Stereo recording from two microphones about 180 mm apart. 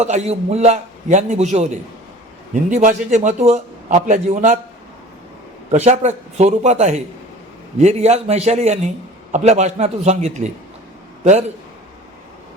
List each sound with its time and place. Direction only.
0.0 s a man's voice: 40° right (ahead or behind)
5.7 s a man's voice: 40° right (ahead or behind)